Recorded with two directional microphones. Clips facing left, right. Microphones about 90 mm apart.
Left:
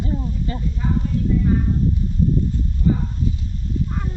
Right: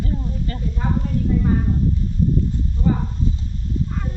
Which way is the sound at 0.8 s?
55° right (ahead or behind).